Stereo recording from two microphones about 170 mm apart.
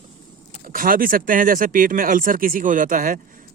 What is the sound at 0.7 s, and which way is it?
Speech, 55° right (ahead or behind).